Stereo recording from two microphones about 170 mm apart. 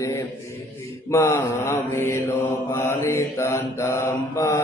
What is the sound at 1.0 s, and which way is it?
Mantra, 15° left (ahead or behind).